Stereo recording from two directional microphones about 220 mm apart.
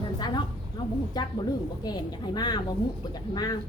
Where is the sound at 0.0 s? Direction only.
20° left (ahead or behind).